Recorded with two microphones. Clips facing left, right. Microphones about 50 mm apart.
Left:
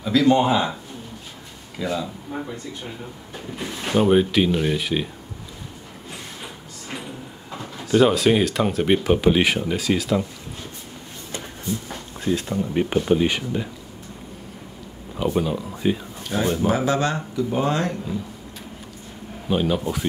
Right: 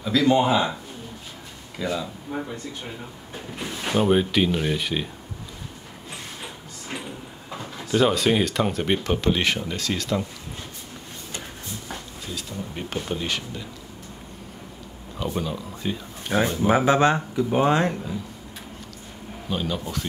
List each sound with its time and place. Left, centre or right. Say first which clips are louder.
0.0 s speech: left 2 dB; centre
1.8 s speech: left 2 dB; centre
3.5 s speech: left 2 dB; centre
7.5 s speech: left 4 dB; centre
12.3 s speech: left 11 dB; left
15.1 s speech: left 6 dB; centre
16.3 s speech: right 1 dB; right
19.5 s speech: left 6 dB; centre